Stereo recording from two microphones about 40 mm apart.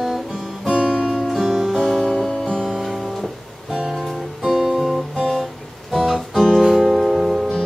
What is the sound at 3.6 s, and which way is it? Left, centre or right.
Music, centre.